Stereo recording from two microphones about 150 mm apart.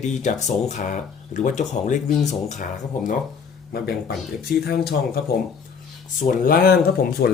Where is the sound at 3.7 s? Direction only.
90° left.